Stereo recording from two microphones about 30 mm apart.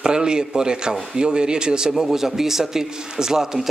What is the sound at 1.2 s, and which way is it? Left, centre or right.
Speech, right.